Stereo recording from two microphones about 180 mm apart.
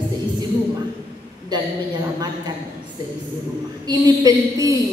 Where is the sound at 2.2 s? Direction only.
25° right (ahead or behind).